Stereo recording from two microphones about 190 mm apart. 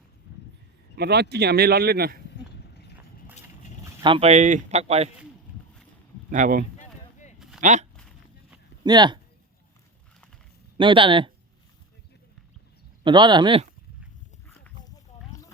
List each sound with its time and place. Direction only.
0.9 s speech: 60° right (ahead or behind)
2.3 s a sound: 60° left (ahead or behind)
4.0 s speech: 30° right (ahead or behind)
6.3 s speech: 45° right (ahead or behind)
6.7 s a sound: 40° left (ahead or behind)
7.6 s speech: 40° right (ahead or behind)
7.9 s a sound: 5° left (ahead or behind)
8.8 s speech: 20° right (ahead or behind)
10.8 s speech: 25° right (ahead or behind)
13.1 s speech: 25° right (ahead or behind)